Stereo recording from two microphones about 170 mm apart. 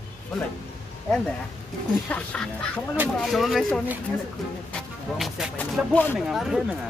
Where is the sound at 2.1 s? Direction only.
10° left (ahead or behind).